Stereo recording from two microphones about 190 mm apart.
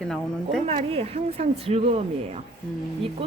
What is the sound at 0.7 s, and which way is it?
Speech, 30° right (ahead or behind).